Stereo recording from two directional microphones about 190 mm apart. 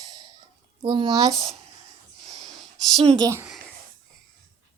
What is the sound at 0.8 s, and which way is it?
Speech, 25° right (ahead or behind).